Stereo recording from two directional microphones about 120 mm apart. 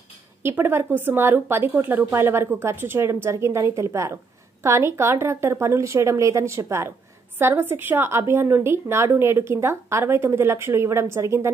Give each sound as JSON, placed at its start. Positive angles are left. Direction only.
{"t": 0.4, "sound": "a woman's voice", "side_deg": -20}